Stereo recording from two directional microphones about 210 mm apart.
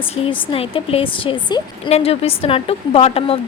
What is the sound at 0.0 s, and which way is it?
A woman's voice, 25° left (ahead or behind).